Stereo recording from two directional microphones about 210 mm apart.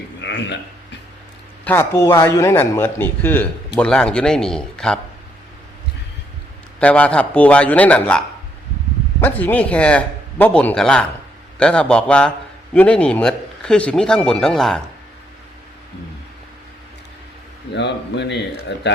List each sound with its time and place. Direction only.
0.2 s speech: 55° left (ahead or behind)
1.6 s a man's voice: 10° left (ahead or behind)
6.7 s a man's voice: 5° left (ahead or behind)
9.2 s a man's voice: 10° left (ahead or behind)
17.7 s speech: 55° left (ahead or behind)